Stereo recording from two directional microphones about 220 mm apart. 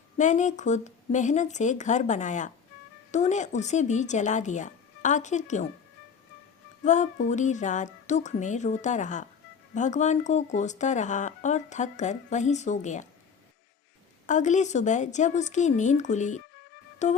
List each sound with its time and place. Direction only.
0.2 s speech: 35° left (ahead or behind)
6.8 s speech: 35° left (ahead or behind)
14.3 s speech: 35° left (ahead or behind)